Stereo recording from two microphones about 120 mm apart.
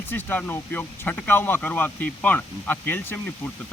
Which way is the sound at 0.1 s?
15° left (ahead or behind).